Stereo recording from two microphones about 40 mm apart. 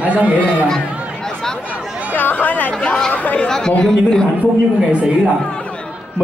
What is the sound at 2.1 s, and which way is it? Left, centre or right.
Chatter, left.